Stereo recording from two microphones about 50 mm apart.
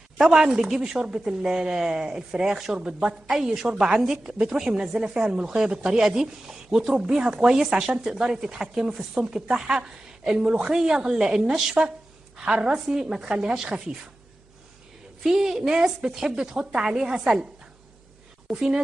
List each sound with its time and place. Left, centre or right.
0.2 s speech: centre
15.2 s speech: centre
18.5 s speech: centre